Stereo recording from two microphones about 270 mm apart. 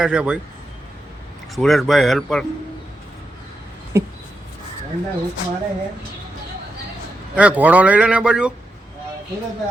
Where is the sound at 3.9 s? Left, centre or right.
Centre.